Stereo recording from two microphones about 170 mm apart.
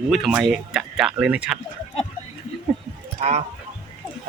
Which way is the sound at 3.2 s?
40° right (ahead or behind).